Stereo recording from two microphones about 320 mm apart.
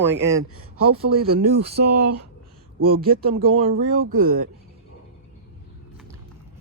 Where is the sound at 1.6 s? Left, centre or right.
Right.